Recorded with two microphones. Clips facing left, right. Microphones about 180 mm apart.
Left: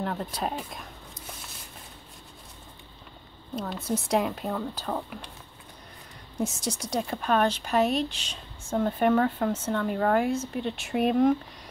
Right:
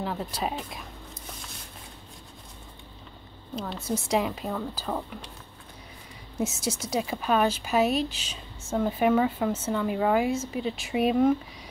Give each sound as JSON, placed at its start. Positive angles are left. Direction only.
{"t": 0.0, "sound": "speech", "side_deg": 0}
{"t": 3.5, "sound": "speech", "side_deg": 0}
{"t": 6.3, "sound": "speech", "side_deg": -5}